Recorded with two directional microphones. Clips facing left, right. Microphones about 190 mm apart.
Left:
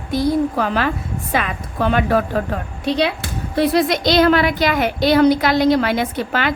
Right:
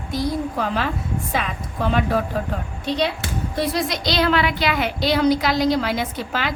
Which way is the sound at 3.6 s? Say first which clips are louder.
Left 8 dB; 55° left (ahead or behind).